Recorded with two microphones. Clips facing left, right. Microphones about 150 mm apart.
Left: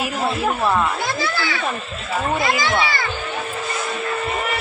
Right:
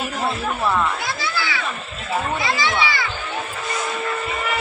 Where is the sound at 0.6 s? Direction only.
15° left (ahead or behind).